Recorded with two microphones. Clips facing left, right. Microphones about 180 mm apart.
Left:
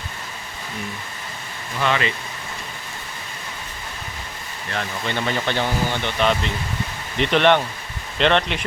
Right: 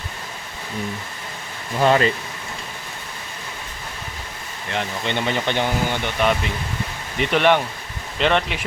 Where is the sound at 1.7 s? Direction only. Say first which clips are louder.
Right 5 dB; 40° right (ahead or behind).